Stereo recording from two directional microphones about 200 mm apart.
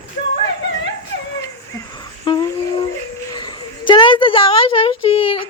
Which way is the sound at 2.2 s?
20° left (ahead or behind).